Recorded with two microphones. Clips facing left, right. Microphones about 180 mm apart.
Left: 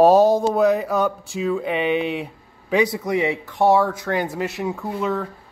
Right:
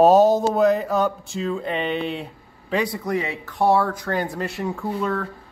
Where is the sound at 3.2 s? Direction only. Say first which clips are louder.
Left 6 dB; 25° left (ahead or behind).